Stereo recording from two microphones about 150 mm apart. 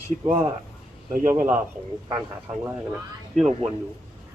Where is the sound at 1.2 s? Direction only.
15° right (ahead or behind).